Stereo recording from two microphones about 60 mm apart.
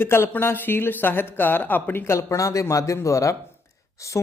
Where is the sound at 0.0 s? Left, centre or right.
Left.